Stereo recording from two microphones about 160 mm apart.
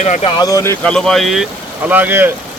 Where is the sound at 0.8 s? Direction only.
5° left (ahead or behind).